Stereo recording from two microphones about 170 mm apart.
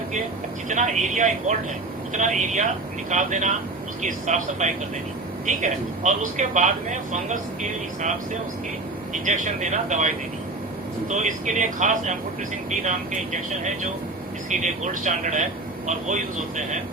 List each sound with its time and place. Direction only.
0.7 s speech: 45° right (ahead or behind)
11.1 s speech: 45° right (ahead or behind)